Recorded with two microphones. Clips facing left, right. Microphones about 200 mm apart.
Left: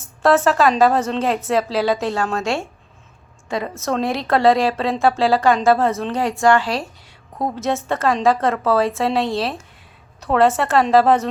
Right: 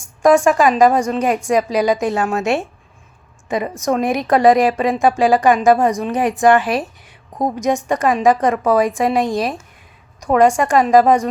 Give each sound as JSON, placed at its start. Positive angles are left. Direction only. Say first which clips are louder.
{"t": 0.0, "sound": "a woman's voice", "louder": "right 3 dB", "side_deg": -15}